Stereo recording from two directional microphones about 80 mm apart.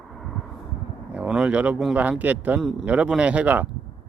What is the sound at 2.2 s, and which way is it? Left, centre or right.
A man's voice, centre.